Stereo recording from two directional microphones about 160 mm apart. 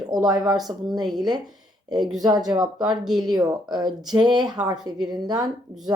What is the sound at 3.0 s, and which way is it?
Speech, centre (ahead or behind).